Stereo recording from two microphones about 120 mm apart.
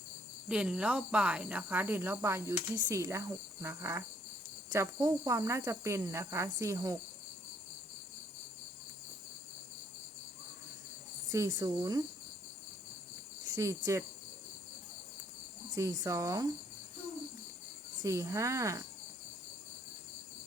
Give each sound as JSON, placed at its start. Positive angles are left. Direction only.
{"t": 0.4, "sound": "speech", "side_deg": -5}
{"t": 11.3, "sound": "speech", "side_deg": -30}
{"t": 13.6, "sound": "speech", "side_deg": -25}
{"t": 15.7, "sound": "speech", "side_deg": -30}
{"t": 18.0, "sound": "speech", "side_deg": -25}